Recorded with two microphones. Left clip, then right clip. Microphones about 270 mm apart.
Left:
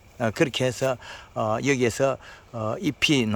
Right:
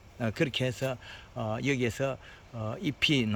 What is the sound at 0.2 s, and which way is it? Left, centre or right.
Speech, centre.